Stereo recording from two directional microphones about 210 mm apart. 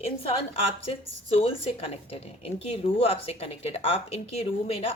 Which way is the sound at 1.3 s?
25° left (ahead or behind).